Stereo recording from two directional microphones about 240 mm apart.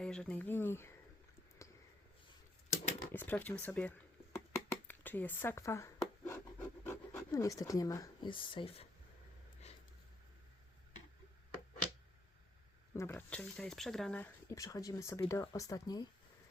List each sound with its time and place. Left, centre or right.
0.0 s speech: centre
3.1 s a sound: centre; by 8.9 s left
12.9 s speech: centre